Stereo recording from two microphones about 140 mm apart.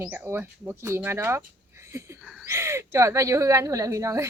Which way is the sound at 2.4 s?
20° right (ahead or behind).